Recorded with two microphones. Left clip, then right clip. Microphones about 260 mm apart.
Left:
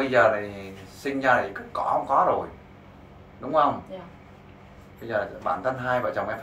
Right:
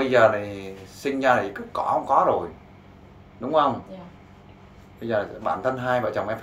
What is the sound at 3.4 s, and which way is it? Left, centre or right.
Speech, right.